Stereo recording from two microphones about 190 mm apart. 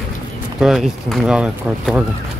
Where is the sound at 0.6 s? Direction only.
Centre (ahead or behind).